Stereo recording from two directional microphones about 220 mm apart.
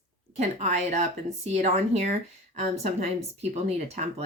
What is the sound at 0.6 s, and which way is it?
Speech, 30° right (ahead or behind).